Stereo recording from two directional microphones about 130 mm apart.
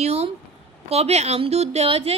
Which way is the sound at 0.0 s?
50° right (ahead or behind).